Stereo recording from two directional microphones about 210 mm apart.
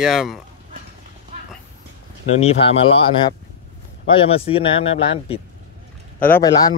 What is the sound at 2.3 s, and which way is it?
Speech, 30° left (ahead or behind).